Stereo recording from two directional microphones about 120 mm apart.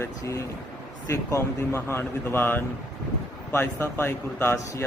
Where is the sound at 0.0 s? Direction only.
25° left (ahead or behind).